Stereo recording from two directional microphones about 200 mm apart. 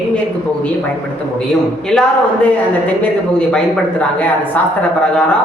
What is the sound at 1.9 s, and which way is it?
Speech, 5° left (ahead or behind).